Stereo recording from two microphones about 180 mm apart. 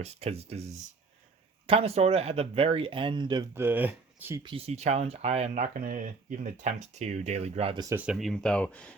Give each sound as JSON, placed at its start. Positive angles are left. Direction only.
{"t": 0.0, "sound": "speech", "side_deg": -35}
{"t": 3.5, "sound": "speech", "side_deg": -10}
{"t": 4.4, "sound": "speech", "side_deg": -35}
{"t": 7.8, "sound": "speech", "side_deg": -15}
{"t": 8.0, "sound": "speech", "side_deg": 0}